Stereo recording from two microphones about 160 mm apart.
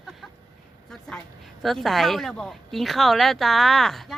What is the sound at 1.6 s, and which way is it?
Speech, centre (ahead or behind).